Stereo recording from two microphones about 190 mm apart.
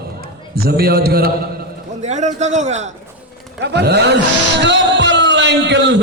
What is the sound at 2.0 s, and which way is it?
Speech, 40° right (ahead or behind).